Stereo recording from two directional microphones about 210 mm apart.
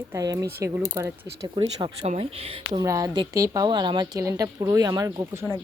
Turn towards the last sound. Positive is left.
turn(degrees=-15)  # may be behind; listen again after turning